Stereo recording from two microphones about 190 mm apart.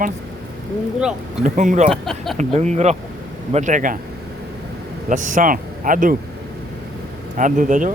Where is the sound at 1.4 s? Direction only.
40° right (ahead or behind).